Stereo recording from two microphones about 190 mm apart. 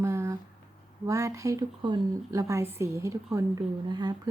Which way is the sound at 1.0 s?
15° right (ahead or behind).